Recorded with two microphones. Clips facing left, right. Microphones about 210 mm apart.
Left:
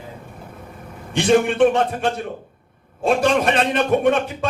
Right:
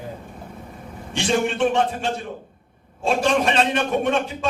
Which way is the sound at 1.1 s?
55° left (ahead or behind).